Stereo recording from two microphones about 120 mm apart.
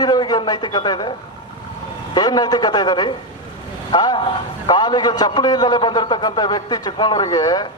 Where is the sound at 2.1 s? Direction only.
35° left (ahead or behind).